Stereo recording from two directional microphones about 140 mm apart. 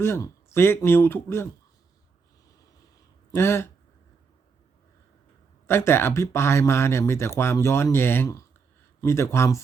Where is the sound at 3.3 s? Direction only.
20° left (ahead or behind).